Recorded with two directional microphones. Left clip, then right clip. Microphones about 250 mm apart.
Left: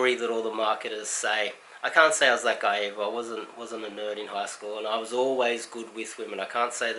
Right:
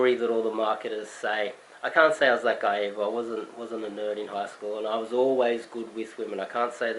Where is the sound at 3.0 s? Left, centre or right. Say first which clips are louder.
Right 2 dB; right.